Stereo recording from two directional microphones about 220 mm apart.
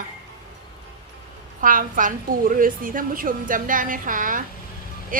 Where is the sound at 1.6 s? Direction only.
40° right (ahead or behind).